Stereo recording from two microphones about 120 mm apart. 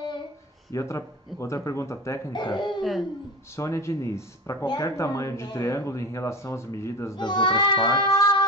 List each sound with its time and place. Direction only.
0.7 s speech: 25° left (ahead or behind)
2.3 s child singing: 35° left (ahead or behind)
2.8 s speech: centre (ahead or behind)
3.5 s speech: 25° left (ahead or behind)
7.2 s child singing: 40° left (ahead or behind)